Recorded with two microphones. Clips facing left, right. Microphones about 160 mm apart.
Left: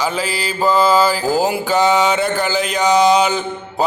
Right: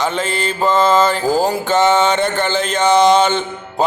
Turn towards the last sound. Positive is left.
turn(degrees=5)  # may be behind; listen again after turning